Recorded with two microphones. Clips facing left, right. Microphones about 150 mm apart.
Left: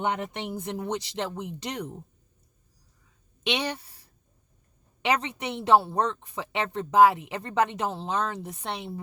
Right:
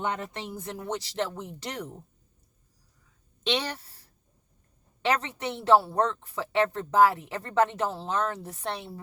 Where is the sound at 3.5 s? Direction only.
15° left (ahead or behind).